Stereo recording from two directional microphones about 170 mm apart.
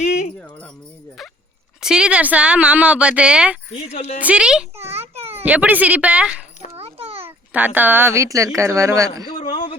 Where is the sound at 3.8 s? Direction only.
40° left (ahead or behind).